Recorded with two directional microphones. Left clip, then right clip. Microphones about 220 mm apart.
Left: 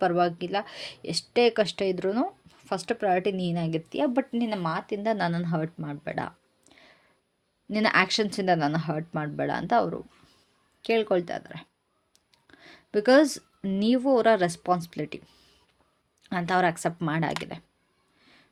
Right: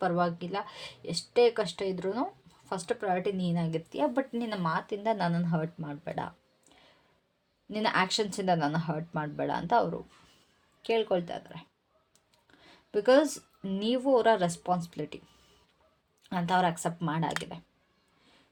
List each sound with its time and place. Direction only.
0.0 s a woman's voice: 40° left (ahead or behind)
16.2 s speech: 30° left (ahead or behind)